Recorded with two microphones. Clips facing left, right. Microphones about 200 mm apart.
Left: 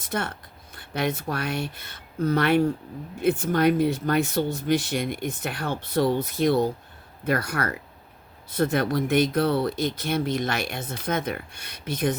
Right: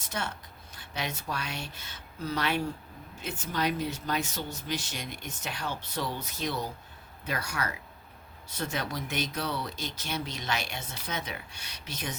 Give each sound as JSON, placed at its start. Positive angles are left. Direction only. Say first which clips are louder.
{"t": 0.0, "sound": "speech", "louder": "left 6 dB", "side_deg": 55}